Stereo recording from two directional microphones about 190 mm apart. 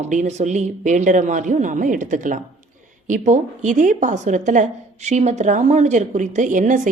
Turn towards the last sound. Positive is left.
turn(degrees=-40)  # may be behind; listen again after turning